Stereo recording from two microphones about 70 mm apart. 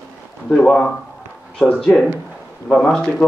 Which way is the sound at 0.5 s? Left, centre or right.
Centre.